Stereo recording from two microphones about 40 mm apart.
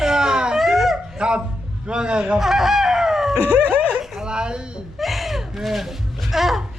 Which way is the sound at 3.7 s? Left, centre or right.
Right.